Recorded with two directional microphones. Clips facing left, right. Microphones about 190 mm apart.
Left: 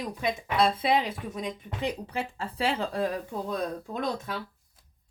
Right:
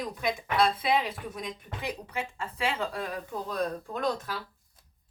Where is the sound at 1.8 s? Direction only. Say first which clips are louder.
Left 4 dB; 30° left (ahead or behind).